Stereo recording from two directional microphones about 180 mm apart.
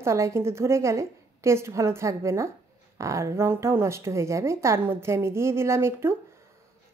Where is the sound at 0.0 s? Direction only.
15° right (ahead or behind).